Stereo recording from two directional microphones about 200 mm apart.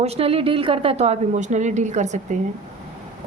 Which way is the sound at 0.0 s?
30° right (ahead or behind).